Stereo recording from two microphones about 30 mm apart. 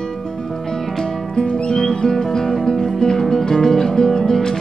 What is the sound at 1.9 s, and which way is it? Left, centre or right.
Music, centre.